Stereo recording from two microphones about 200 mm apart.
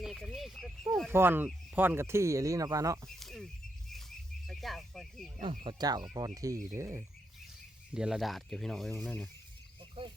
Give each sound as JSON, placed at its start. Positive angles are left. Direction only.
{"t": 0.0, "sound": "a sound", "side_deg": 0}
{"t": 1.1, "sound": "speech", "side_deg": -10}
{"t": 3.2, "sound": "a sound", "side_deg": 0}
{"t": 4.4, "sound": "speech", "side_deg": 0}
{"t": 5.6, "sound": "speech", "side_deg": -20}
{"t": 7.9, "sound": "speech", "side_deg": -5}
{"t": 10.0, "sound": "speech", "side_deg": -25}